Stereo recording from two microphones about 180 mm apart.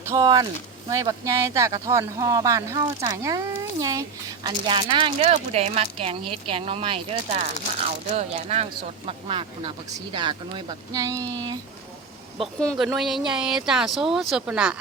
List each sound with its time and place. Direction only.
0.0 s speech: 20° right (ahead or behind)
12.8 s speech: centre (ahead or behind)